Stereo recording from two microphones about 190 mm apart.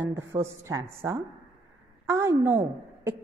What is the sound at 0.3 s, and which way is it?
A woman's voice, 15° right (ahead or behind).